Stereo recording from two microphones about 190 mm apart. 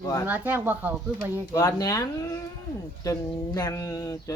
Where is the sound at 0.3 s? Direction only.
10° right (ahead or behind).